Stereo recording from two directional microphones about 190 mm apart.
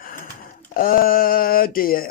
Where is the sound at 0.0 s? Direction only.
50° left (ahead or behind).